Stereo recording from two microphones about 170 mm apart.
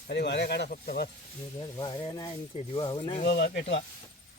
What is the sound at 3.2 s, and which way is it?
Speech, 80° left.